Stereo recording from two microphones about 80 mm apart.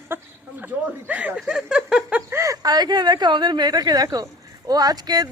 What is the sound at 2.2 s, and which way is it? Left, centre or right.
Speech, right.